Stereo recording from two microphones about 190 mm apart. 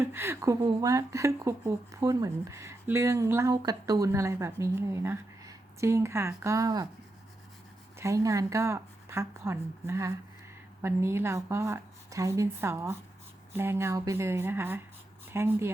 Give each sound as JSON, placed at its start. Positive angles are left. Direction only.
{"t": 0.0, "sound": "speech", "side_deg": -10}
{"t": 7.9, "sound": "speech", "side_deg": -15}